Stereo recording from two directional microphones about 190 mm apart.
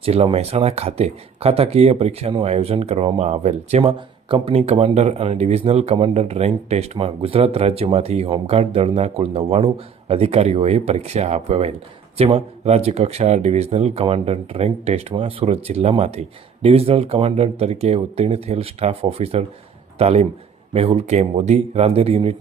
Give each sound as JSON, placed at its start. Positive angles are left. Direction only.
{"t": 0.0, "sound": "speech", "side_deg": -30}